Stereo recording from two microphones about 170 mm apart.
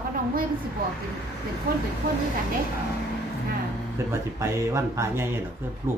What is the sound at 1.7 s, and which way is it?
Speech, 55° right (ahead or behind).